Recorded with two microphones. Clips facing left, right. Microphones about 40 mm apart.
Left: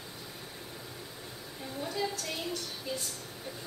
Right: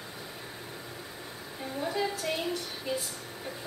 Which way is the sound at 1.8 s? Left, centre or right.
Centre.